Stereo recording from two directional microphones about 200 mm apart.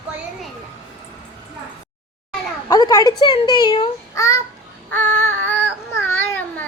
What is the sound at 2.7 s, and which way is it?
A child's voice, 20° left (ahead or behind).